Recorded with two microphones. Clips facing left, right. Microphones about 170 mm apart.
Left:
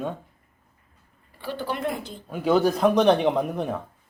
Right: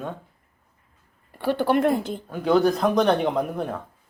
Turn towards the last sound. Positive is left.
turn(degrees=0)  # may be behind; listen again after turning